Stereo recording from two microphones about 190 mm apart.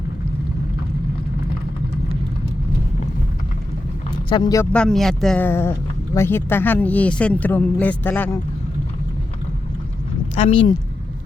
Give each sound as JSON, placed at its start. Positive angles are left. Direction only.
{"t": 4.3, "sound": "speech", "side_deg": 20}
{"t": 4.7, "sound": "speech", "side_deg": 5}
{"t": 10.4, "sound": "speech", "side_deg": 30}